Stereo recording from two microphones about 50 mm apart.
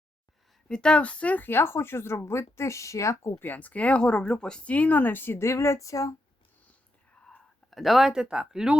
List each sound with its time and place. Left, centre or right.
0.7 s speech: centre
1.5 s speech: left
3.4 s speech: left
4.0 s speech: centre
4.7 s speech: left
5.4 s a sound: left
7.2 s whispering: left
7.7 s speech: centre